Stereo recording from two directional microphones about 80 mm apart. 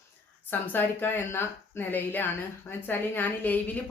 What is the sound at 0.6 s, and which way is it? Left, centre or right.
Speech, left.